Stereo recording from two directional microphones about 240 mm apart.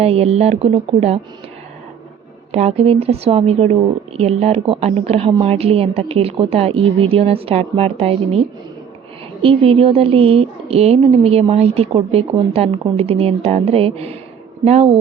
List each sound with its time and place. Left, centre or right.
0.0 s a woman's voice: right
2.5 s a woman's voice: right
9.4 s a woman's voice: right